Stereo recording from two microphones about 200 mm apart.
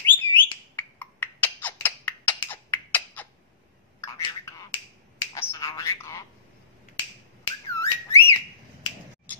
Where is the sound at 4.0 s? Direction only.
15° left (ahead or behind).